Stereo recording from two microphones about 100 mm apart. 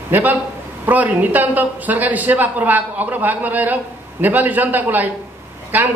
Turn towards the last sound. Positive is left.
turn(degrees=-15)  # may be behind; listen again after turning